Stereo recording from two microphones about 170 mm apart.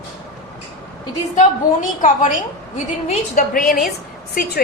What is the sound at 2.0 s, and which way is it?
A woman's voice, 50° left (ahead or behind).